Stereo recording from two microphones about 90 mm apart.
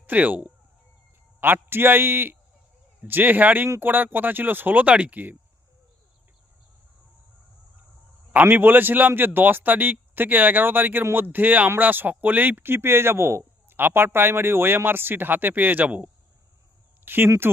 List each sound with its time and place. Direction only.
0.0 s a man's voice: 20° right (ahead or behind)
8.3 s a man's voice: 20° right (ahead or behind)
17.1 s a man's voice: 25° right (ahead or behind)